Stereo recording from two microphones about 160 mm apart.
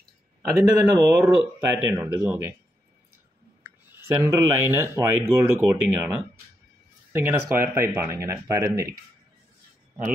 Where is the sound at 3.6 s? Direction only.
15° right (ahead or behind).